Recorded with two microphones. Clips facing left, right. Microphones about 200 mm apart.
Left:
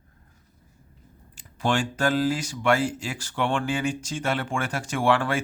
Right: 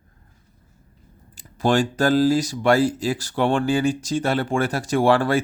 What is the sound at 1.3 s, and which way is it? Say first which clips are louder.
Speech: right 6 dB; 35° right (ahead or behind).